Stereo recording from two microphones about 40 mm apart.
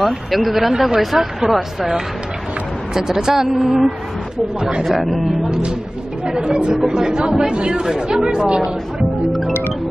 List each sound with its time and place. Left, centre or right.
0.0 s a woman's voice: centre
2.9 s a woman's voice: centre
5.0 s speech: centre
5.4 s speech: centre
7.8 s a woman's voice: centre
8.3 s speech: right